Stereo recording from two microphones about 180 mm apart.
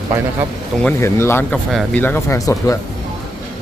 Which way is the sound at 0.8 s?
15° left (ahead or behind).